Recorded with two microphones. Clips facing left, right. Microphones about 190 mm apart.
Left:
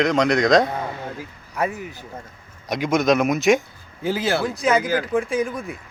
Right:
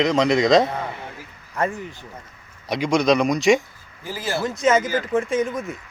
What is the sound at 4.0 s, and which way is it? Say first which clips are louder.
Speech: left 7 dB; 80° left.